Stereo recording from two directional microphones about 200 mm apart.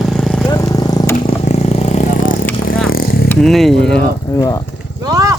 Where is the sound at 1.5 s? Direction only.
35° left (ahead or behind); by 3.2 s 50° left (ahead or behind).